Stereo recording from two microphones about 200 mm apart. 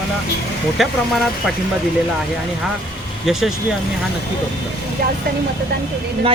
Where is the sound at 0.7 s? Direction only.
Centre (ahead or behind).